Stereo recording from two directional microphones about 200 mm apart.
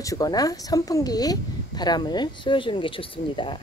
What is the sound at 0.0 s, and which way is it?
Speech, 15° left (ahead or behind).